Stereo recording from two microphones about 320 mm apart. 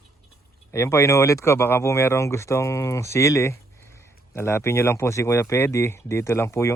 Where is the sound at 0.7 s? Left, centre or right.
Centre.